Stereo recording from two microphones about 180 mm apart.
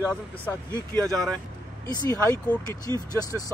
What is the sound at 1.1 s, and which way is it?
Speech, 5° left (ahead or behind).